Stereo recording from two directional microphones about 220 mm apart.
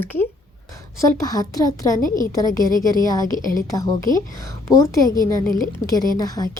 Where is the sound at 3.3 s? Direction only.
40° left (ahead or behind).